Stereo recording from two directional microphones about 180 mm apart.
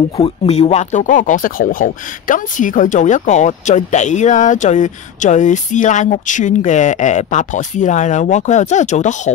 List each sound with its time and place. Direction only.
0.2 s speech: 35° left (ahead or behind)